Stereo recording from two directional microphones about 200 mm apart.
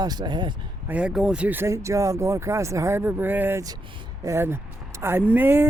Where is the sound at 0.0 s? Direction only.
20° right (ahead or behind).